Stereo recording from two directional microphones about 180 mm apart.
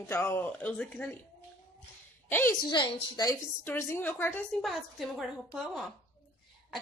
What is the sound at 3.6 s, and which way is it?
Speech, 10° left (ahead or behind).